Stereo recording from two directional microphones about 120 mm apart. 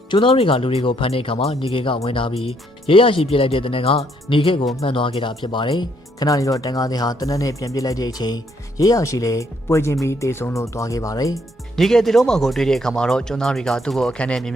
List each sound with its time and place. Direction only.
0.1 s speech: 45° left (ahead or behind); by 11.3 s 30° left (ahead or behind)
11.3 s speech: 5° left (ahead or behind)